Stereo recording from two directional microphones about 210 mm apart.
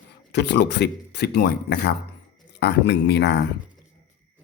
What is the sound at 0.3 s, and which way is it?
Speech, 55° left (ahead or behind).